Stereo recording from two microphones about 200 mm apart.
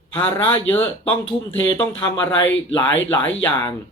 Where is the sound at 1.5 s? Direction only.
20° left (ahead or behind).